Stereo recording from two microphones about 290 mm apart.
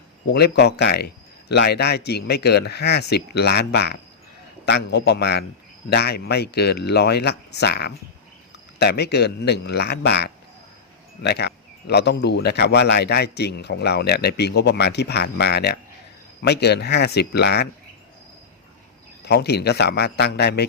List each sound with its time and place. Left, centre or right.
0.3 s speech: left
19.2 s speech: left